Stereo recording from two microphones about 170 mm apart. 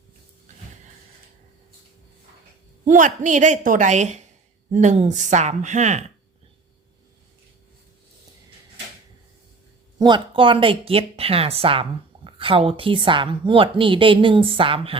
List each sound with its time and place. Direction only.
2.8 s a woman's voice: 50° right (ahead or behind)
10.0 s speech: 30° right (ahead or behind)